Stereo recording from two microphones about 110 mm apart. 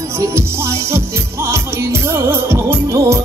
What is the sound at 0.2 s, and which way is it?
Music, 25° right (ahead or behind).